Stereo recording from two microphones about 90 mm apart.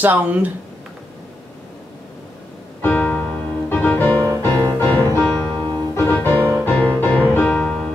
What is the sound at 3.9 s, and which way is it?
Music, 25° left (ahead or behind).